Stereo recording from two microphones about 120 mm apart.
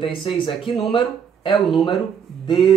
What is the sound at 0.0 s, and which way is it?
Speech, 45° left (ahead or behind).